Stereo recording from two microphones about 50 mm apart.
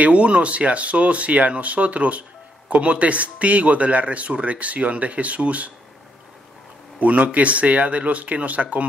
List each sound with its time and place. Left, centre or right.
0.0 s speech: right
7.0 s speech: right